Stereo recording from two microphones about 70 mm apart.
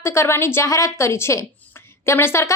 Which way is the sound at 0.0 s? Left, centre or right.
Left.